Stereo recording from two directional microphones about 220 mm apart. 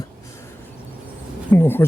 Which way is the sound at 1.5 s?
10° left (ahead or behind).